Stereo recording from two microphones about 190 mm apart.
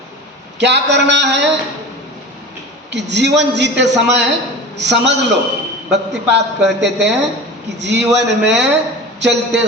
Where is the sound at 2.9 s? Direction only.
65° right (ahead or behind).